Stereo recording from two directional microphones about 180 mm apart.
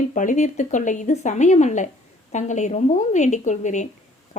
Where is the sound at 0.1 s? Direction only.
45° left (ahead or behind).